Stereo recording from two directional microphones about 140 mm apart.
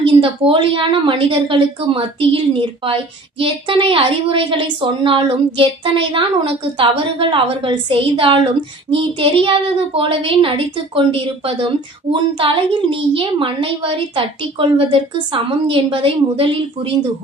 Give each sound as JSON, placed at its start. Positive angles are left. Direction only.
{"t": 0.0, "sound": "a woman's voice", "side_deg": -40}